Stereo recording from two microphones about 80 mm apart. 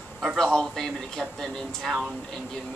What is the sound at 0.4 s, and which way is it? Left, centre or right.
Speech, centre.